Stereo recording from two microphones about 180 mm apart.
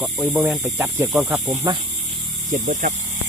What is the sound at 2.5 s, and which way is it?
Speech, 45° right (ahead or behind).